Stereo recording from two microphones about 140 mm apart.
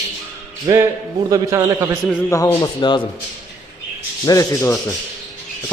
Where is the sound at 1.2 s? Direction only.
25° right (ahead or behind).